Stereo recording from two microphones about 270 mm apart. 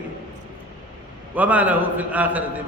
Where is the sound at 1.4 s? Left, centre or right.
Centre.